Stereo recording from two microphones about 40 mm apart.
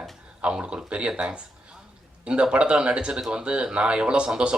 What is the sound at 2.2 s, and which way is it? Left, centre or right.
A man's voice, right.